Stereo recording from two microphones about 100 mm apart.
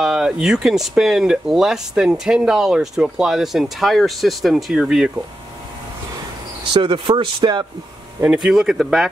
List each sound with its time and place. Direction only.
0.0 s speech: 5° right (ahead or behind)
6.7 s speech: 55° right (ahead or behind)
8.3 s speech: 5° right (ahead or behind)